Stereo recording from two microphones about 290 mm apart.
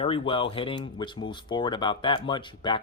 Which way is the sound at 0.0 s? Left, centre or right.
Centre.